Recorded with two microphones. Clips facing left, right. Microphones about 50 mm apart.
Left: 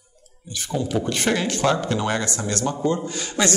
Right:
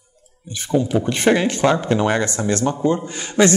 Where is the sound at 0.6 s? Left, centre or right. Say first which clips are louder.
Right 5 dB; centre.